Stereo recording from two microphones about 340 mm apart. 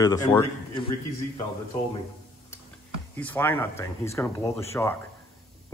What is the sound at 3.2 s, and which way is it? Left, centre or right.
A man's voice, centre.